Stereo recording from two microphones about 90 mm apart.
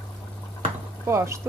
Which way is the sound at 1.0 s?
30° right (ahead or behind).